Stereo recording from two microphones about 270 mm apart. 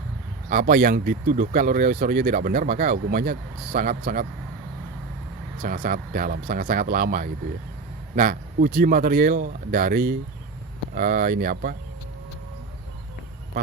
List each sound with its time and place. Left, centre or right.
0.5 s speech: right
5.6 s speech: right